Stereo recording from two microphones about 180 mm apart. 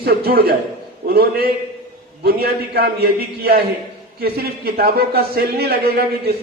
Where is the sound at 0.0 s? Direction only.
55° right (ahead or behind).